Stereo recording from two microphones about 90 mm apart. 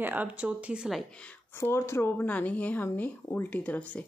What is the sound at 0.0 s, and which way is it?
Speech, 20° right (ahead or behind).